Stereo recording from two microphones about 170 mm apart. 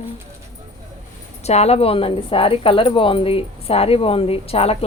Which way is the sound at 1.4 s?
40° left (ahead or behind).